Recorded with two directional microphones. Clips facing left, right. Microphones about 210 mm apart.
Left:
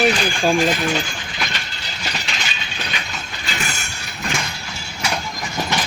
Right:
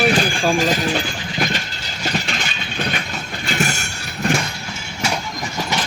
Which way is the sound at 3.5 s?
45° right (ahead or behind).